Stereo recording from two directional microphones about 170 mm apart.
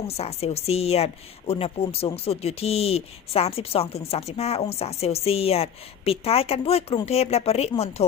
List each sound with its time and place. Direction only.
0.2 s speech: 40° left (ahead or behind)